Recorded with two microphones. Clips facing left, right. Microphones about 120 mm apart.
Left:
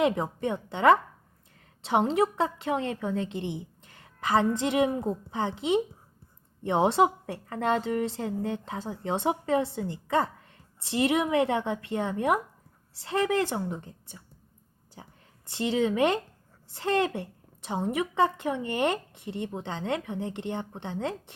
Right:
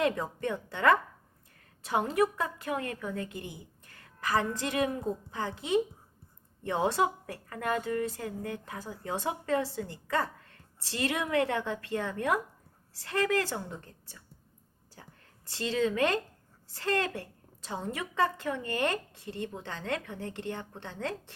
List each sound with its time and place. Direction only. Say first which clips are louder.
0.0 s a woman's voice: left 4 dB; 20° left (ahead or behind)